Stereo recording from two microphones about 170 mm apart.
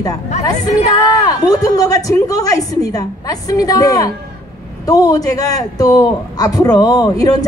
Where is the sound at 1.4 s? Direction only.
20° left (ahead or behind).